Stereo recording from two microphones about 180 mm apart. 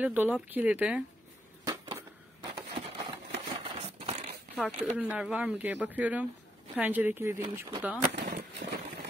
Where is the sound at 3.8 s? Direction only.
35° right (ahead or behind).